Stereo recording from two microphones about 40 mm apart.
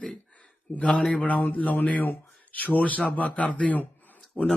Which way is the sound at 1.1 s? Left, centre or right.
Left.